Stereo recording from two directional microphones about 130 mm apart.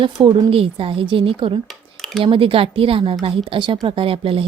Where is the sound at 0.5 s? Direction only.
45° right (ahead or behind).